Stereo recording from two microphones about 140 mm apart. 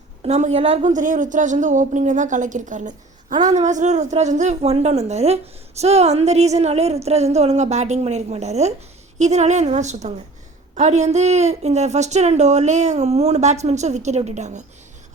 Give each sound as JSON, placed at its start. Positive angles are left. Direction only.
{"t": 0.2, "sound": "a woman's voice", "side_deg": -55}